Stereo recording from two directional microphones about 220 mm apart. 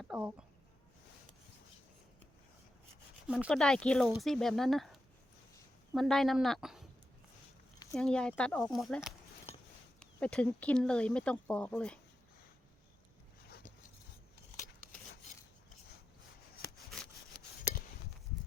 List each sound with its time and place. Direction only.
0.0 s speech: 5° right (ahead or behind)
3.2 s speech: centre (ahead or behind)
7.9 s speech: 5° left (ahead or behind)
13.5 s dog: 40° left (ahead or behind)